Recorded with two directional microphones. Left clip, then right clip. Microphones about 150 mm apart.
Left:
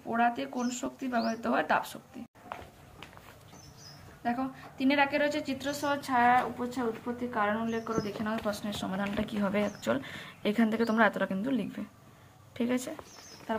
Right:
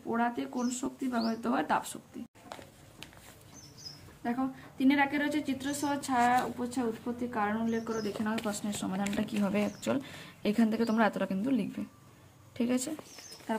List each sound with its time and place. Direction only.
0.1 s speech: 35° right (ahead or behind)
4.2 s speech: 40° right (ahead or behind)
6.0 s speech: 75° right (ahead or behind); by 13.0 s 45° right (ahead or behind)